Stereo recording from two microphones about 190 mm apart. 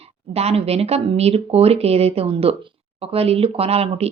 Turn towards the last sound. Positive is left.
turn(degrees=-30)  # may be behind; listen again after turning